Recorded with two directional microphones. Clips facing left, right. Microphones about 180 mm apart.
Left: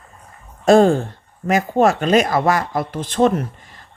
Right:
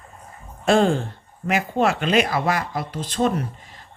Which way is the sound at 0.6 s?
40° left (ahead or behind).